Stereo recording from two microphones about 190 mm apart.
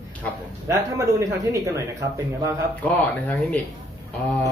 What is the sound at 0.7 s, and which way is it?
Speech, 15° right (ahead or behind).